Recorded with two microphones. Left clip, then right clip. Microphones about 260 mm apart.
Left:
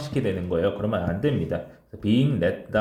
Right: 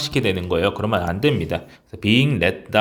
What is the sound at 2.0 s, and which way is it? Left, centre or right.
Speech, centre.